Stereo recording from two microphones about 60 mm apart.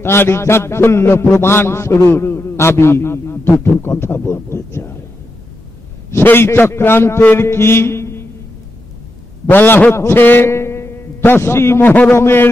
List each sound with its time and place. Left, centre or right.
0.0 s a man's voice: left
6.2 s a man's voice: left
7.3 s a sound: left
9.5 s a man's voice: left
9.9 s a man's voice: left
10.5 s a sound: left
11.8 s a man's voice: left
12.2 s a man's voice: left